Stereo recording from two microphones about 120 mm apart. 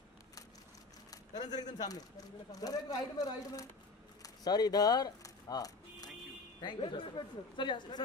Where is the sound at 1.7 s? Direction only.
35° left (ahead or behind).